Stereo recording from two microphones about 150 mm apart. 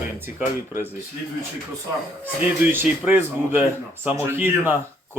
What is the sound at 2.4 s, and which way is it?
Speech, 15° right (ahead or behind).